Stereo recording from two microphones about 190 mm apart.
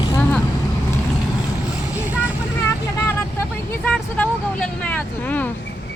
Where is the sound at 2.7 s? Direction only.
15° left (ahead or behind).